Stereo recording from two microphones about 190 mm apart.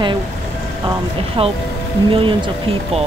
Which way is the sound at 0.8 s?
30° right (ahead or behind).